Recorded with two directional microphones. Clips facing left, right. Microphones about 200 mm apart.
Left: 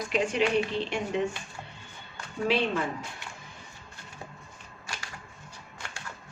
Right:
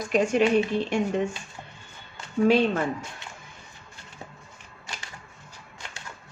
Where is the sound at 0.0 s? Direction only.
45° right (ahead or behind).